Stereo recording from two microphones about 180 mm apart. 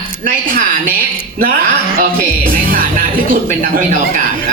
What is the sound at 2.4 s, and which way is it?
A man's voice, 50° right (ahead or behind).